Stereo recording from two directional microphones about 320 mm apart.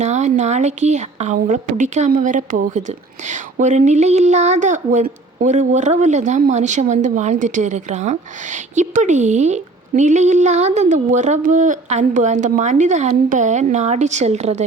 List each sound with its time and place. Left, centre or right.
0.0 s a woman's voice: right